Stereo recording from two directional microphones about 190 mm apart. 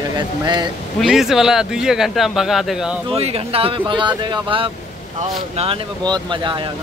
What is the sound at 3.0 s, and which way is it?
Speech, 30° right (ahead or behind).